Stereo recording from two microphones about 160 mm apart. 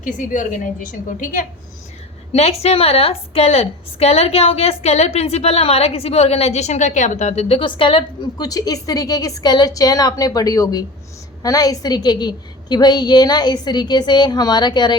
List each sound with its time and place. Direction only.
0.0 s a woman's voice: 55° left (ahead or behind)
2.3 s a woman's voice: 40° left (ahead or behind)